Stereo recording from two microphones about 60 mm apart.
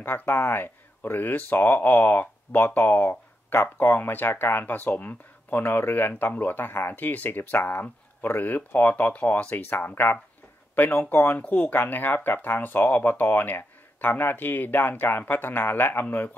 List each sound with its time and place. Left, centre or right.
0.0 s speech: left
9.6 s speech: left